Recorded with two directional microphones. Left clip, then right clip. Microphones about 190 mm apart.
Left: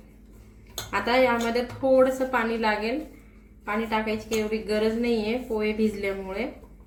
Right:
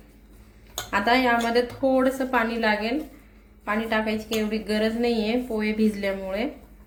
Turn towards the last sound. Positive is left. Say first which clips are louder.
# right 2 dB
turn(degrees=-40)  # may be behind; listen again after turning